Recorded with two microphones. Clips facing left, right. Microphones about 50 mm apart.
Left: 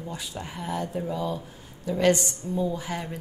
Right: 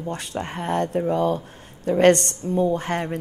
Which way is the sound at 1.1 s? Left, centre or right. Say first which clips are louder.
Right 8 dB; right.